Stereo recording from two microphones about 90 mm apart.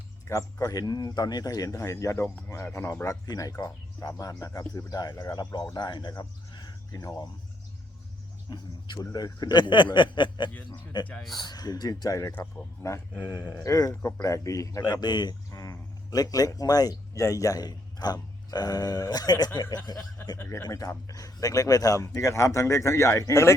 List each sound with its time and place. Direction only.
0.3 s a man's voice: 40° left (ahead or behind)
8.5 s speech: 50° left (ahead or behind)
11.1 s a man's voice: 5° left (ahead or behind)
11.3 s a man's voice: 50° left (ahead or behind); by 13.0 s 35° left (ahead or behind)
13.1 s speech: 15° right (ahead or behind)
13.5 s a man's voice: 40° left (ahead or behind)
14.8 s speech: 55° left (ahead or behind)
15.5 s a man's voice: 35° left (ahead or behind)